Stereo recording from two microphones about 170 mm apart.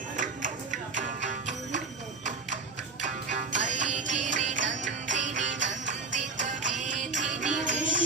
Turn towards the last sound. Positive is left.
turn(degrees=-50)  # may be behind; listen again after turning